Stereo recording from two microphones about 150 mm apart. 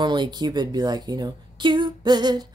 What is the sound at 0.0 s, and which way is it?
A woman's voice, 30° right (ahead or behind).